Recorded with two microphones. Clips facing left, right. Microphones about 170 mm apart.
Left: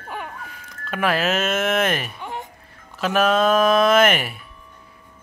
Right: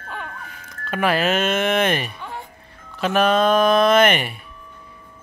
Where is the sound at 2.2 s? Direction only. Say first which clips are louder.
Left 2 dB; 15° left (ahead or behind).